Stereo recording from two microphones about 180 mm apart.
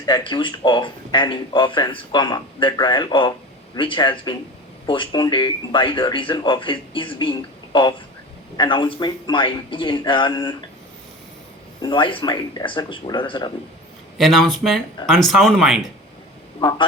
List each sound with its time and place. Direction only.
0.0 s speech: 25° left (ahead or behind)
11.8 s speech: 25° left (ahead or behind)
14.2 s speech: centre (ahead or behind)
16.6 s speech: 25° left (ahead or behind)